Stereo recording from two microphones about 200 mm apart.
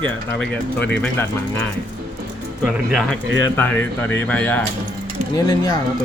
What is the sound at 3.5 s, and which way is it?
Speech, 10° left (ahead or behind).